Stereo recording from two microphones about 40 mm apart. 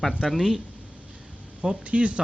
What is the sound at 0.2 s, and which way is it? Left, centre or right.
Speech, centre.